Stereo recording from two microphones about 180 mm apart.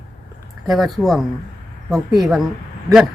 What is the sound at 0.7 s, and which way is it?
Speech, centre (ahead or behind).